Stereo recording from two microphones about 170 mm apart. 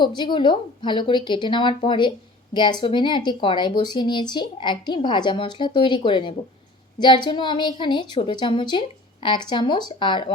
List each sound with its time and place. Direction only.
0.2 s speech: 30° left (ahead or behind)